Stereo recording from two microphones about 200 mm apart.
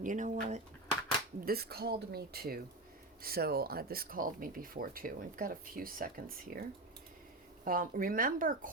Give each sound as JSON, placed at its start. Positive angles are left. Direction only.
{"t": 0.0, "sound": "speech", "side_deg": -40}
{"t": 1.5, "sound": "speech", "side_deg": -50}